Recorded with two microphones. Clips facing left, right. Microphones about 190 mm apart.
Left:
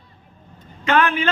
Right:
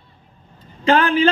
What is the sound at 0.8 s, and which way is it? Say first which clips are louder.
Speech: right 3 dB; 30° right (ahead or behind).